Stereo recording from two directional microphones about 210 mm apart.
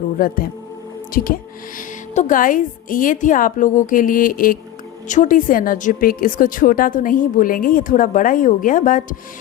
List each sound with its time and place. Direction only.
0.2 s a woman's voice: 45° left (ahead or behind)